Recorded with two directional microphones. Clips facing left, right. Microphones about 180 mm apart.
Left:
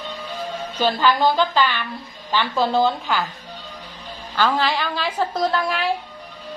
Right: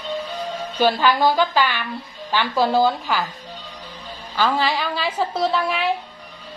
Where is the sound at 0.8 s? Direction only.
10° right (ahead or behind).